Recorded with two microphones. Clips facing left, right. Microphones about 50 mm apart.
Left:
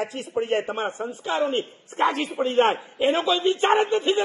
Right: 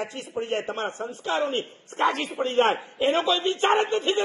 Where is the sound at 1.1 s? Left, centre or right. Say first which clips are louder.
Left 2 dB; centre.